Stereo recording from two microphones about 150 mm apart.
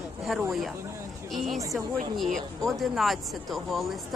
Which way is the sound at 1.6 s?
20° right (ahead or behind).